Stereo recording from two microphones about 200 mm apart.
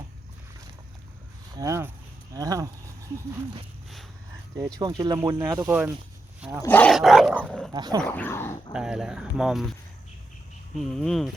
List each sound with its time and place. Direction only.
1.5 s speech: 15° right (ahead or behind)
4.8 s speech: 20° right (ahead or behind)
6.6 s dog: 10° left (ahead or behind)
7.7 s speech: 20° right (ahead or behind)
8.0 s speech: 10° left (ahead or behind)
8.7 s dog: 5° right (ahead or behind)
10.8 s dog: centre (ahead or behind)